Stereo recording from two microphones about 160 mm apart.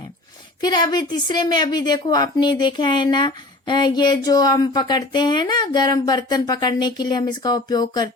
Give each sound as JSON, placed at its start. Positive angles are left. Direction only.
{"t": 0.6, "sound": "speech", "side_deg": 25}